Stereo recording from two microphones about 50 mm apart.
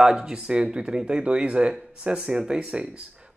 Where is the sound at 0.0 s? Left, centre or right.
Centre.